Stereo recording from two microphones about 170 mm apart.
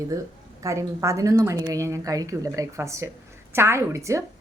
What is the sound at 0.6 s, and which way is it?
Speech, 15° right (ahead or behind).